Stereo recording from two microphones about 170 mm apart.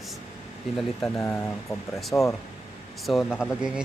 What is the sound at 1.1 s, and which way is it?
Speech, 15° left (ahead or behind).